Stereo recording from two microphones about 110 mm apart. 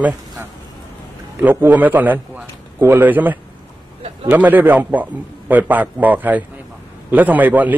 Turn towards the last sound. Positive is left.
turn(degrees=-15)  # may be behind; listen again after turning